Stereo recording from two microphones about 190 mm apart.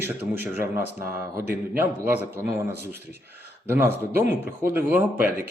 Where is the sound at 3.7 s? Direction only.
10° right (ahead or behind).